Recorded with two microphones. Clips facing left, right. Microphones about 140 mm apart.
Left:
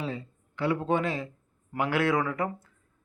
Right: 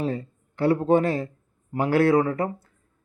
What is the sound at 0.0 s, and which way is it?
A man's voice, 45° right (ahead or behind).